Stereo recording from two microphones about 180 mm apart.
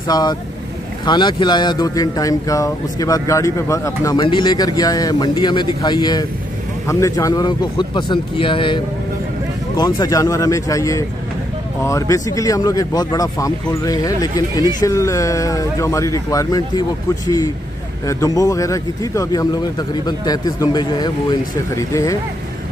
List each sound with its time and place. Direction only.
0.1 s speech: 20° left (ahead or behind)
18.0 s speech: 20° left (ahead or behind)